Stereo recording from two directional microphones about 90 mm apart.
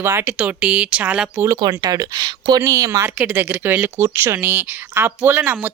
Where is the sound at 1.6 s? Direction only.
50° right (ahead or behind).